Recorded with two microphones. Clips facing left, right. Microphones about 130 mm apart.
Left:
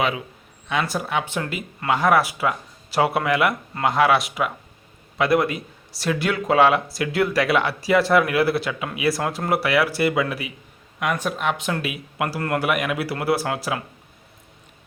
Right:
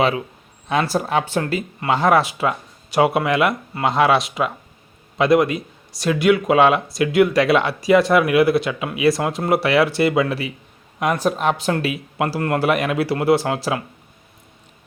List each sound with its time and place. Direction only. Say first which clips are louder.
0.7 s speech: right 5 dB; 35° right (ahead or behind)